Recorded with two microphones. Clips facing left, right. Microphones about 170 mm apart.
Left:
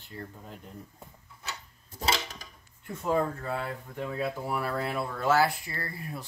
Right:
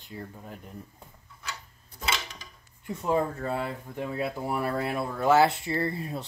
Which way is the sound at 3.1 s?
20° right (ahead or behind).